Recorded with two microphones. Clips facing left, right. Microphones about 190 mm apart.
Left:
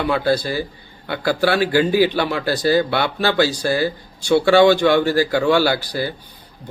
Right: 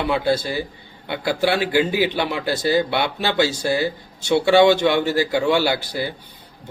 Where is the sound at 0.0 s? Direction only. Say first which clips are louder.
Left 2 dB; 25° right (ahead or behind).